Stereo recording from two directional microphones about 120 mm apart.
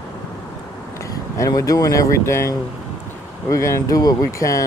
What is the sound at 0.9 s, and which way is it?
Speech, 25° left (ahead or behind).